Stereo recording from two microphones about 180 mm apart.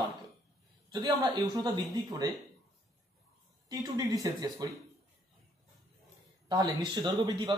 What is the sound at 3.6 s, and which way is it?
Speech, 20° right (ahead or behind).